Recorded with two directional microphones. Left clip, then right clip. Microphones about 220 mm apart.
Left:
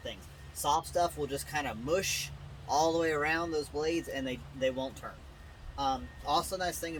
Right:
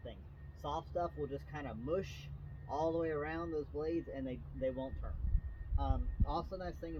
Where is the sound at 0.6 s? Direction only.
15° left (ahead or behind).